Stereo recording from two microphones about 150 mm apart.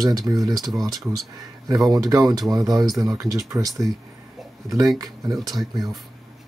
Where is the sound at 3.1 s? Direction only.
25° right (ahead or behind).